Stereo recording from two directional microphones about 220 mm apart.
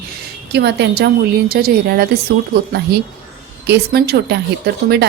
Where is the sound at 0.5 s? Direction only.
50° right (ahead or behind).